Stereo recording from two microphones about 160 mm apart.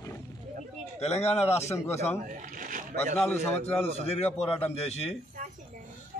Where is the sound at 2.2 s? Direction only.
55° right (ahead or behind).